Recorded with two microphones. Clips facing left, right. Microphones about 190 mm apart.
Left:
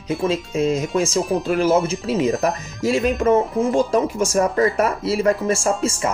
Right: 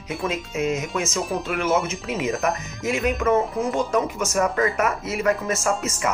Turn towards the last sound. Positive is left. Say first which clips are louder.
# left 3 dB
turn(degrees=30)  # may be behind; listen again after turning